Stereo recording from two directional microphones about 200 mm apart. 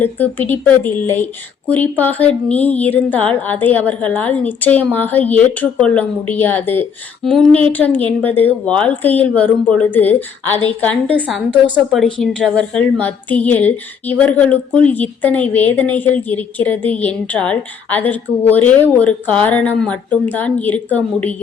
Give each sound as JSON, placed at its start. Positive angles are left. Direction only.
{"t": 0.0, "sound": "a woman's voice", "side_deg": 10}